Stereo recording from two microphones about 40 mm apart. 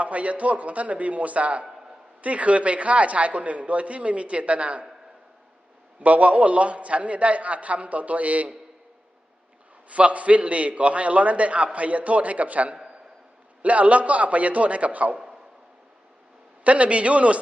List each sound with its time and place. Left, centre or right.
0.0 s a man's voice: right
6.0 s a man's voice: right
9.9 s a man's voice: right
12.7 s a sound: right
13.6 s a man's voice: right
16.6 s a man's voice: right